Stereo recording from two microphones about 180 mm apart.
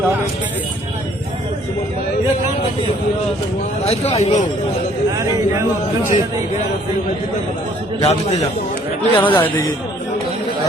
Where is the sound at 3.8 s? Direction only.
35° left (ahead or behind).